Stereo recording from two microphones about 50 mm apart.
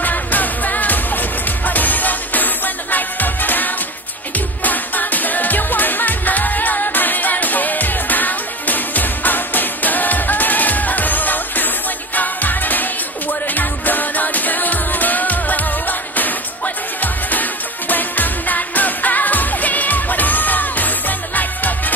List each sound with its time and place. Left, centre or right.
0.0 s music: left